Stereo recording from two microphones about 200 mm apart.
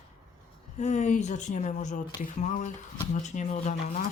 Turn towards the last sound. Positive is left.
turn(degrees=35)  # may be behind; listen again after turning